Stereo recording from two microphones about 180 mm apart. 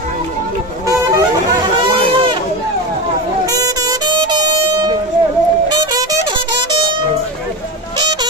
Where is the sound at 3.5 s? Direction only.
20° right (ahead or behind).